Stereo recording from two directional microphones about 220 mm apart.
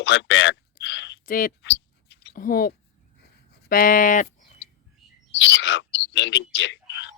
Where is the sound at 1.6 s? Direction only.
55° left (ahead or behind).